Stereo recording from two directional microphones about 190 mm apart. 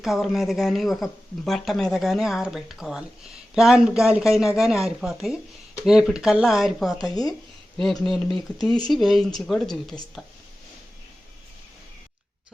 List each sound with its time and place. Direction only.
0.0 s speech: centre (ahead or behind)